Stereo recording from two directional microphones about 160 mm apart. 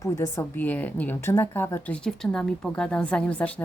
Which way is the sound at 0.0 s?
20° left (ahead or behind).